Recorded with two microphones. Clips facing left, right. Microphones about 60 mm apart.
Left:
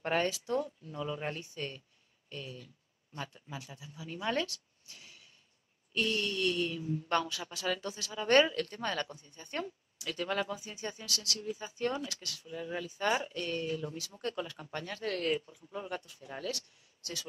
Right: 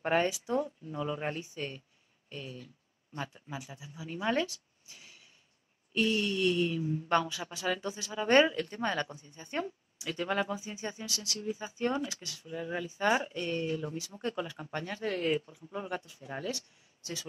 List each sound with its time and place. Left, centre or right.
0.0 s speech: centre